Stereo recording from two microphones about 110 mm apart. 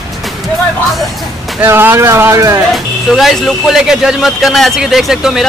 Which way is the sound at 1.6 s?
20° right (ahead or behind).